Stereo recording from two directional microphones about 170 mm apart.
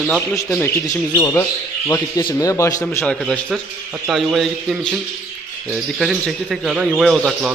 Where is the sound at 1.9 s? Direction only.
20° left (ahead or behind).